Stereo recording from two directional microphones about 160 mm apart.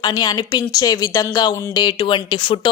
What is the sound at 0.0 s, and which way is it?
A woman's voice, 25° left (ahead or behind).